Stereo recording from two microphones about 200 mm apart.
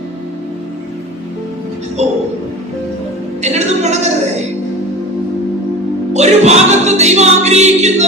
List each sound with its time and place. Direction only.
3.4 s music: 35° right (ahead or behind)
6.1 s music: 35° right (ahead or behind)